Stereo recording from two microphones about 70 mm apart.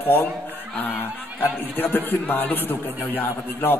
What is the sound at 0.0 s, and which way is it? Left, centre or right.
A man's voice, left.